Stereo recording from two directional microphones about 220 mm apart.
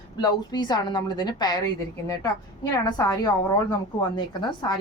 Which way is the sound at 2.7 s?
15° left (ahead or behind).